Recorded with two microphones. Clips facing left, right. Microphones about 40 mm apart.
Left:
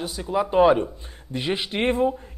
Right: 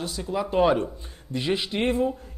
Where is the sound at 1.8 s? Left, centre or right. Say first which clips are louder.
Left 3 dB; left.